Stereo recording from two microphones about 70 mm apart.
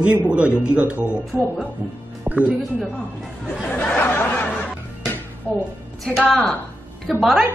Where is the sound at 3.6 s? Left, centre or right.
Left.